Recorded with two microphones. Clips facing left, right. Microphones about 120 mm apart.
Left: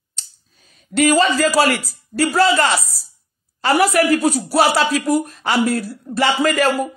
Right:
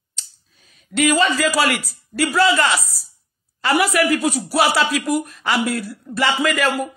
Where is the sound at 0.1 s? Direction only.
40° left (ahead or behind).